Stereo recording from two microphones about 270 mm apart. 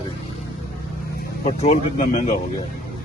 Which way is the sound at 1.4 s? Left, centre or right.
Left.